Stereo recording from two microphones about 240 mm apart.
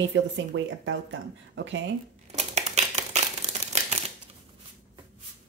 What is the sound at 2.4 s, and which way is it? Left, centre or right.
Crumpling, right.